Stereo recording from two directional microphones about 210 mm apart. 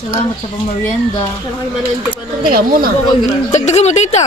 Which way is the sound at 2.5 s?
45° right (ahead or behind).